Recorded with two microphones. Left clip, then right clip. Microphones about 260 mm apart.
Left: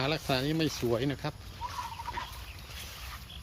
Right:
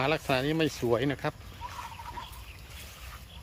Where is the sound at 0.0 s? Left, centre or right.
Centre.